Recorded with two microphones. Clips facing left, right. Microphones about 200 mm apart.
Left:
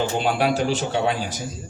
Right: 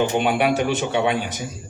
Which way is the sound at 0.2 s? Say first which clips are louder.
Right 2 dB; 65° right (ahead or behind).